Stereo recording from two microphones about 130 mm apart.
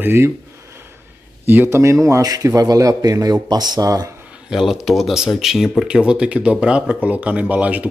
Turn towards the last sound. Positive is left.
turn(degrees=-10)  # may be behind; listen again after turning